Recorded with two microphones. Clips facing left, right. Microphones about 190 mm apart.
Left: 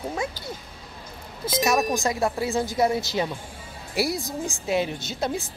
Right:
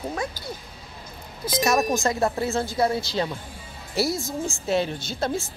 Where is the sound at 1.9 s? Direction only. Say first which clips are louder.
Right 1 dB; 15° left (ahead or behind).